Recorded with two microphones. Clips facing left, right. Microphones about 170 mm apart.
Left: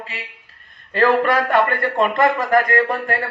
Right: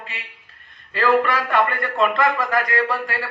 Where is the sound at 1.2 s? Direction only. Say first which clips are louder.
Left 3 dB; 45° left (ahead or behind).